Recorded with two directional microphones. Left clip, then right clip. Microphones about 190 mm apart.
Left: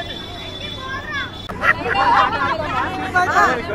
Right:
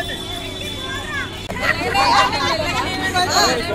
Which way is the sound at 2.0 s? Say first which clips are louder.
Left 1 dB; 5° left (ahead or behind).